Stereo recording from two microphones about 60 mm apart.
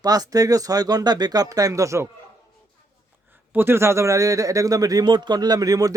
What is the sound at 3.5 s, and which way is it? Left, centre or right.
A man's voice, right.